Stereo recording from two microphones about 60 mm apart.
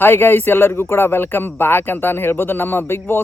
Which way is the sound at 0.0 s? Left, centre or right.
Left.